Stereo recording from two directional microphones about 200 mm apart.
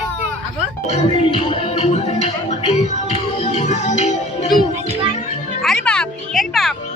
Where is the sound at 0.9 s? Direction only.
30° left (ahead or behind).